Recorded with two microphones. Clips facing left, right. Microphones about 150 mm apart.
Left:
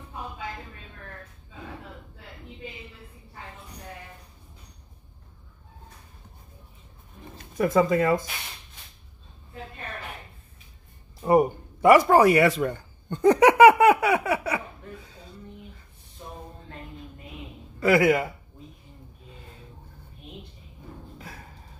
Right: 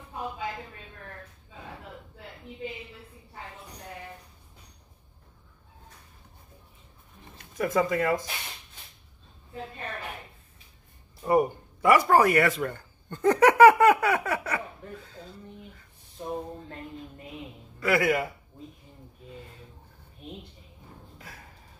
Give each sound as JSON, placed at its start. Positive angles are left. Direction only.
{"t": 7.5, "sound": "speech", "side_deg": 30}
{"t": 11.2, "sound": "speech", "side_deg": 25}
{"t": 15.0, "sound": "a sound", "side_deg": 15}
{"t": 17.7, "sound": "a man's voice", "side_deg": 25}